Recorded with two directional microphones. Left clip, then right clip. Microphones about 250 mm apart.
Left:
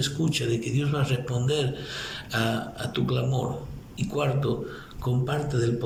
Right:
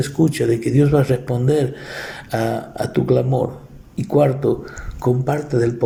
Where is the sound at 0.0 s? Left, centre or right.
Right.